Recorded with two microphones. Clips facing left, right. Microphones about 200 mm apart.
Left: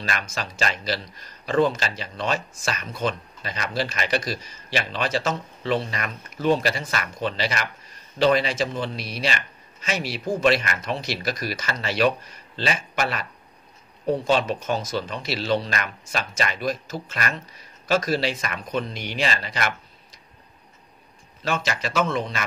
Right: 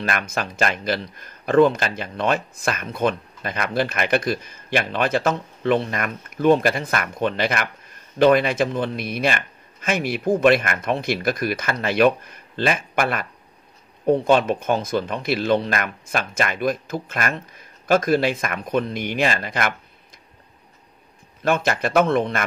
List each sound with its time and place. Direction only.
0.0 s speech: 55° right (ahead or behind)
21.4 s speech: 55° right (ahead or behind)